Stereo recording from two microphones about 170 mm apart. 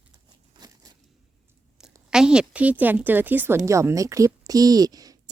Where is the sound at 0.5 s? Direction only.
25° right (ahead or behind).